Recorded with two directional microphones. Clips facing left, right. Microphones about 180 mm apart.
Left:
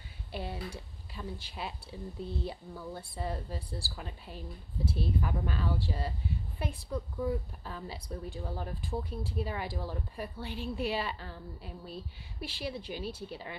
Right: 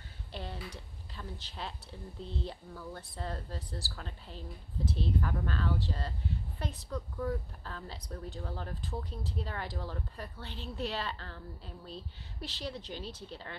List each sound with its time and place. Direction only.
0.3 s a woman's voice: 10° left (ahead or behind)